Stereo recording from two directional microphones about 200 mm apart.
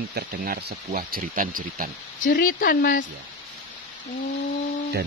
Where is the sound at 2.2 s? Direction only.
45° left (ahead or behind).